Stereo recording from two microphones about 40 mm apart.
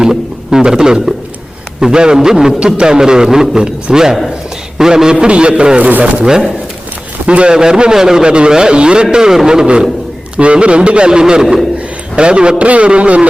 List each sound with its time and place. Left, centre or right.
0.0 s a sound: centre
1.8 s a man's voice: centre
5.2 s a man's voice: right
7.3 s a man's voice: right